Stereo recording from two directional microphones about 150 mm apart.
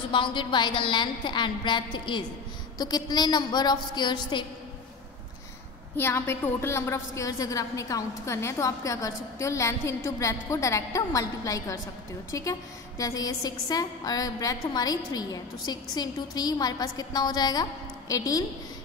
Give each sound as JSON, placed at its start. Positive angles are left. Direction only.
{"t": 0.1, "sound": "a woman's voice", "side_deg": 35}
{"t": 5.9, "sound": "a woman's voice", "side_deg": 15}